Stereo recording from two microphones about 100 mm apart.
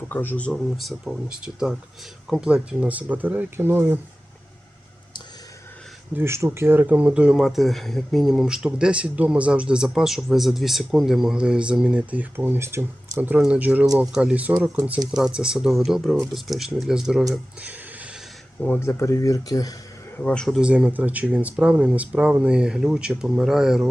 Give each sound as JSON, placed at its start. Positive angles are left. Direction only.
{"t": 0.1, "sound": "speech", "side_deg": 20}
{"t": 0.5, "sound": "speech", "side_deg": 0}
{"t": 2.3, "sound": "speech", "side_deg": -10}
{"t": 6.1, "sound": "speech", "side_deg": -25}
{"t": 17.6, "sound": "a sound", "side_deg": -15}
{"t": 18.6, "sound": "speech", "side_deg": 20}
{"t": 20.1, "sound": "speech", "side_deg": 10}
{"t": 20.6, "sound": "speech", "side_deg": -10}